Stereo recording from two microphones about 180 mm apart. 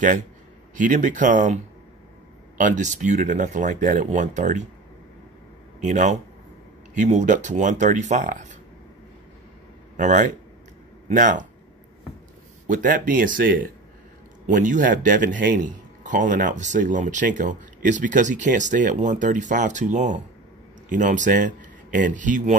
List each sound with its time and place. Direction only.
0.7 s speech: 45° right (ahead or behind)
5.8 s a man's voice: 40° right (ahead or behind)
9.9 s speech: 45° right (ahead or behind)
12.6 s speech: 45° right (ahead or behind)